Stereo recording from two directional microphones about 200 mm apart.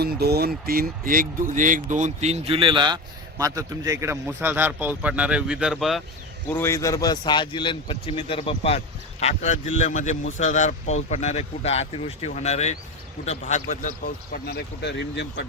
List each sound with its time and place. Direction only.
0.0 s speech: 50° right (ahead or behind); by 6.0 s centre (ahead or behind)
6.5 s speech: 10° left (ahead or behind); by 13.9 s 35° left (ahead or behind)
14.3 s speech: 50° left (ahead or behind)